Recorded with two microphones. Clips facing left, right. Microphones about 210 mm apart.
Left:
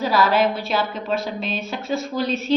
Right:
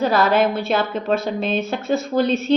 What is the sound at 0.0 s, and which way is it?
A woman's voice, 50° right (ahead or behind).